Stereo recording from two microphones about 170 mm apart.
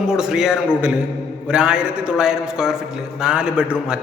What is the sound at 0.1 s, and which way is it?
A man's voice, 5° right (ahead or behind).